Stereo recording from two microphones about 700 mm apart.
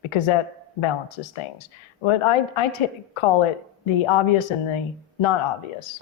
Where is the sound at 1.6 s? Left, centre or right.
Left.